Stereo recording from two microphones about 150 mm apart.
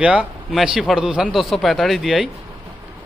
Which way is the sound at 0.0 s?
10° right (ahead or behind).